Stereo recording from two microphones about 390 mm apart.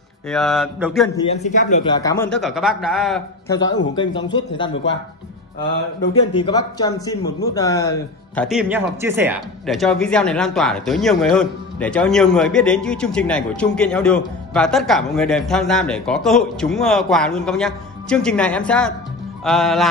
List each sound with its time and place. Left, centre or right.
0.3 s speech: centre
1.1 s speech: centre
3.6 s a man's voice: left
3.9 s speech: centre
6.3 s speech: centre